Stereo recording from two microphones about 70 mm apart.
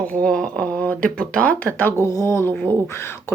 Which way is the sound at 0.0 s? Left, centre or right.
Centre.